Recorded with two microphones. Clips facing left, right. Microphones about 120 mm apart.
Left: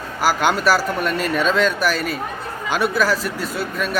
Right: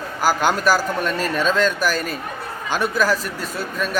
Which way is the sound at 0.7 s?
5° left (ahead or behind).